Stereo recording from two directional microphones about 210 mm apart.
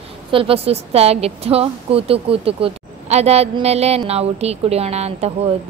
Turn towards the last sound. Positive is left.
turn(degrees=-30)  # may be behind; listen again after turning